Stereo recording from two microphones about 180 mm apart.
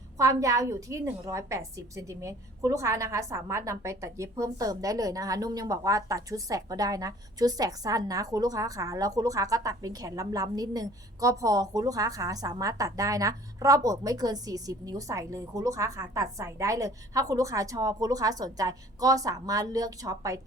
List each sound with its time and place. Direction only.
0.2 s a woman's voice: 15° right (ahead or behind)